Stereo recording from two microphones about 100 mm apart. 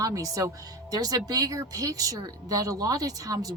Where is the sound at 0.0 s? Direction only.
35° right (ahead or behind).